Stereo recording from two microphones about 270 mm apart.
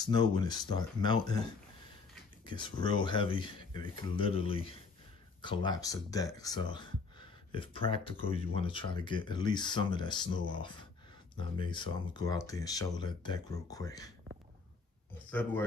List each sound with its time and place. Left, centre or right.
0.0 s speech: centre
2.4 s speech: centre